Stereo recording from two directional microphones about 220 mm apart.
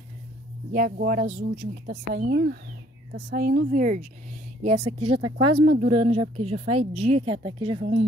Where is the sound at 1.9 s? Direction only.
50° right (ahead or behind); by 8.0 s 30° right (ahead or behind).